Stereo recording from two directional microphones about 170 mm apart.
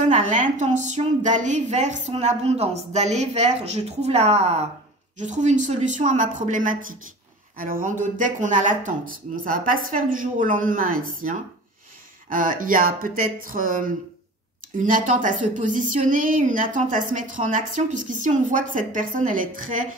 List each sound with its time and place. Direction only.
0.0 s a woman's voice: 45° right (ahead or behind)